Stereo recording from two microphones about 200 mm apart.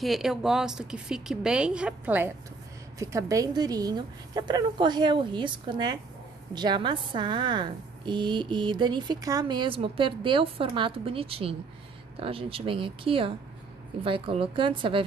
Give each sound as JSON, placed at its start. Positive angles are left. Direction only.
{"t": 0.0, "sound": "a woman's voice", "side_deg": 0}